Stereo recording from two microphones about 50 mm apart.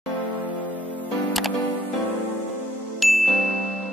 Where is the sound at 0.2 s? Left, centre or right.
Right.